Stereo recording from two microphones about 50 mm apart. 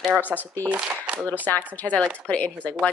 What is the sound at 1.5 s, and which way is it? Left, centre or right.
Speech, left.